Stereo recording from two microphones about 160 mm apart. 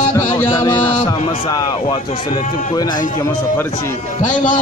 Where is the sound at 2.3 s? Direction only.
50° left (ahead or behind).